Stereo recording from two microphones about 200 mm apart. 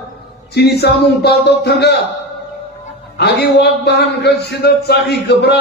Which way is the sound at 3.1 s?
55° left (ahead or behind).